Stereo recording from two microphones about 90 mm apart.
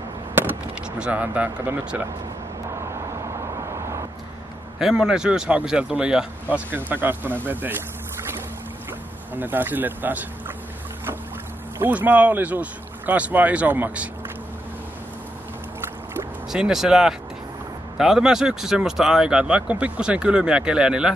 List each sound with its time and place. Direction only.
0.3 s a sound: 25° right (ahead or behind)
0.9 s speech: 15° right (ahead or behind)
4.7 s speech: 5° right (ahead or behind); by 7.8 s 20° right (ahead or behind)
9.3 s speech: 20° right (ahead or behind)
11.8 s speech: 20° right (ahead or behind)
16.5 s speech: 5° right (ahead or behind)